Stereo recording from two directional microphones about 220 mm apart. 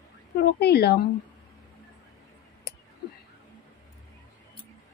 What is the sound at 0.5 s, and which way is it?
Speech, 50° left (ahead or behind).